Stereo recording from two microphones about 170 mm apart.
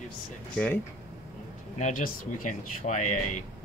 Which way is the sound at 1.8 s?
50° left (ahead or behind).